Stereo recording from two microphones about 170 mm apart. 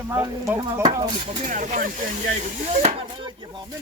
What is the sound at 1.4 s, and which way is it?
Speech, 45° right (ahead or behind).